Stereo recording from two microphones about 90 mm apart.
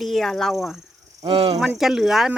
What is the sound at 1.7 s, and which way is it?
Speech, 5° right (ahead or behind).